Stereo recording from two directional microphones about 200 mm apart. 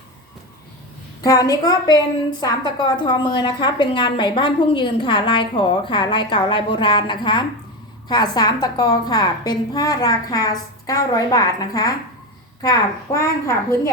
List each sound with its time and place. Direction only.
1.2 s a woman's voice: 20° left (ahead or behind)